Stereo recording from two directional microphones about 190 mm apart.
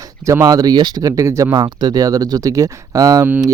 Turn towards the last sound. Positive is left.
turn(degrees=-15)  # may be behind; listen again after turning